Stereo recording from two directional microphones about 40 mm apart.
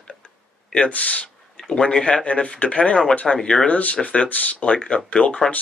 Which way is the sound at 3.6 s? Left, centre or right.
Left.